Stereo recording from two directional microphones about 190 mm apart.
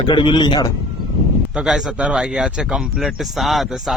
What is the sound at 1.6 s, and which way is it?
Speech, centre (ahead or behind).